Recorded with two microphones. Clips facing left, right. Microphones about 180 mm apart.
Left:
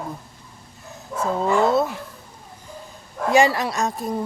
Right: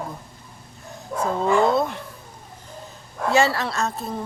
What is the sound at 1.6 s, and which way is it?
Speech, 5° left (ahead or behind).